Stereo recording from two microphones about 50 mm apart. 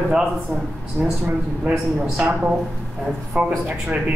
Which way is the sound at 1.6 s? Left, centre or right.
Centre.